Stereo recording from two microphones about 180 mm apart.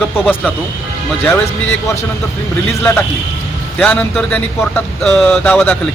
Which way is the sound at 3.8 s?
5° left (ahead or behind).